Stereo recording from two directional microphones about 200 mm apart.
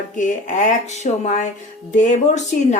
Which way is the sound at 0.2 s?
40° left (ahead or behind).